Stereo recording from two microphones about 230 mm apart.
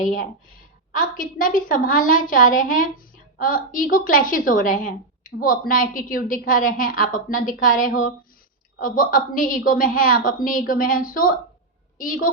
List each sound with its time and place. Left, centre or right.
0.0 s a woman's voice: left